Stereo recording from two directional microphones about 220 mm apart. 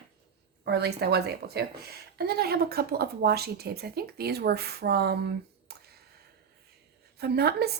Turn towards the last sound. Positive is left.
turn(degrees=-45)  # may be behind; listen again after turning